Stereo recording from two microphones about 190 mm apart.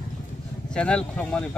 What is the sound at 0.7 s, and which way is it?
Speech, 5° left (ahead or behind).